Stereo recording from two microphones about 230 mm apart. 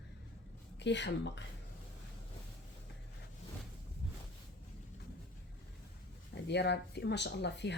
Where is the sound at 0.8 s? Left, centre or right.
Left.